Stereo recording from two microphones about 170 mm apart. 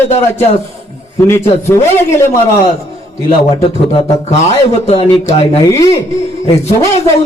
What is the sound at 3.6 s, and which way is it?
Speech, 35° left (ahead or behind).